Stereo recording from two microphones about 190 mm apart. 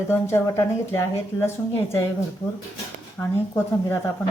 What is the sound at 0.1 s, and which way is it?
Speech, 15° left (ahead or behind).